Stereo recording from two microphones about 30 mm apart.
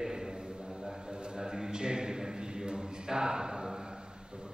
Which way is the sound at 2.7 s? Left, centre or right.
Right.